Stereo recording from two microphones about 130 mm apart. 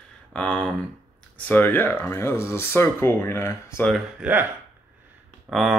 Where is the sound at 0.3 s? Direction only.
10° left (ahead or behind).